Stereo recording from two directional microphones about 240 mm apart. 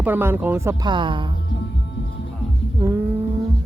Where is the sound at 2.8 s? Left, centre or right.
Centre.